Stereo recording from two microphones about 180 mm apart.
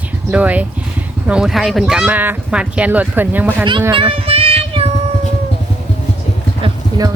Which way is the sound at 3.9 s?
30° right (ahead or behind).